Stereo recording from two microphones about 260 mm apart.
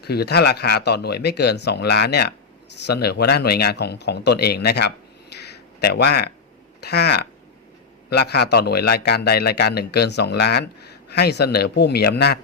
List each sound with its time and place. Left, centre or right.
0.0 s a man's voice: left
5.5 s a sound: left
6.8 s a man's voice: left